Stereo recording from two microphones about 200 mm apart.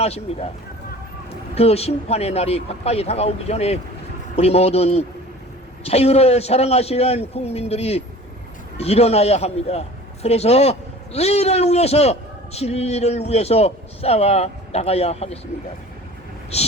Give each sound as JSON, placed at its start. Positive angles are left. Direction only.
{"t": 0.0, "sound": "a man's voice", "side_deg": 30}
{"t": 1.5, "sound": "a man's voice", "side_deg": 30}
{"t": 16.5, "sound": "a man's voice", "side_deg": 30}